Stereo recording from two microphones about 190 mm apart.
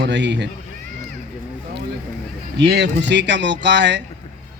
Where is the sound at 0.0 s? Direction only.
70° right (ahead or behind).